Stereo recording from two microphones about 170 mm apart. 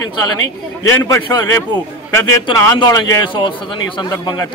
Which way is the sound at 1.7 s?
25° right (ahead or behind).